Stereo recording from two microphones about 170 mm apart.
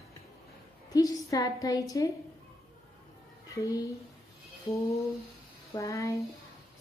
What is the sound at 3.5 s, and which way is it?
Speech, 20° left (ahead or behind).